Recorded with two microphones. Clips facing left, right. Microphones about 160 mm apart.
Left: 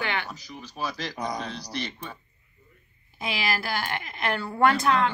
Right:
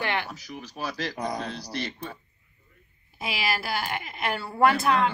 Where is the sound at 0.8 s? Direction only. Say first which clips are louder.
Right 1 dB; 35° right (ahead or behind).